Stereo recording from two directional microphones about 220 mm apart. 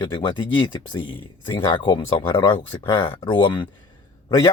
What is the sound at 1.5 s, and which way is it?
Speech, 20° left (ahead or behind).